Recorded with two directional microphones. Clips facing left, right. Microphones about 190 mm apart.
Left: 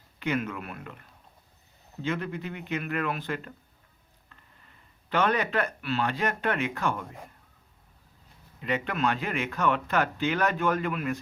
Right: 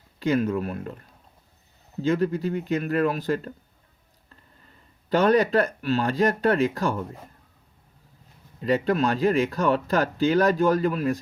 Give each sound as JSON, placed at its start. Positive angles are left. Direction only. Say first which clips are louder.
{"t": 0.2, "sound": "speech", "louder": "right 7 dB", "side_deg": -35}
{"t": 8.6, "sound": "speech", "louder": "right 6 dB", "side_deg": -35}